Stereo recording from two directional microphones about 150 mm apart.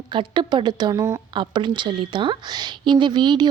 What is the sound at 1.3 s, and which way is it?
A woman's voice, 30° right (ahead or behind).